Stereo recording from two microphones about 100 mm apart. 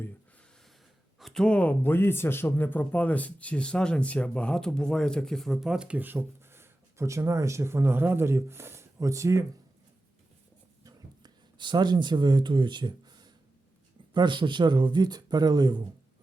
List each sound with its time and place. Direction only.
1.2 s speech: 5° left (ahead or behind); by 9.4 s 30° right (ahead or behind)
10.8 s a sound: 45° right (ahead or behind)
14.1 s speech: 50° right (ahead or behind)